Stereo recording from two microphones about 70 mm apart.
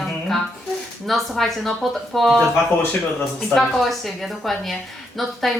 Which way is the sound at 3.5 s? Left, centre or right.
Centre.